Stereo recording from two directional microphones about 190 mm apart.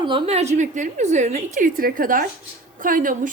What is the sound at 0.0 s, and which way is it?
A woman's voice, 25° right (ahead or behind).